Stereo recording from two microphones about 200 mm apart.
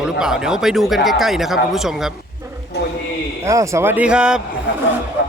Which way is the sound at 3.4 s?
15° right (ahead or behind).